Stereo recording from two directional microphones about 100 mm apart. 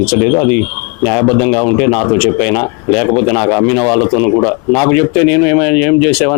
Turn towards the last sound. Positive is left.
turn(degrees=15)  # may be behind; listen again after turning